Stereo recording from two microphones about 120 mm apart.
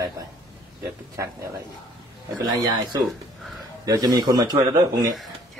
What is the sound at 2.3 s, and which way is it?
A man's voice, 30° right (ahead or behind).